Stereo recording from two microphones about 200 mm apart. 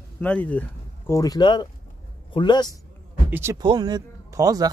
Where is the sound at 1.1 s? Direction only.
20° left (ahead or behind).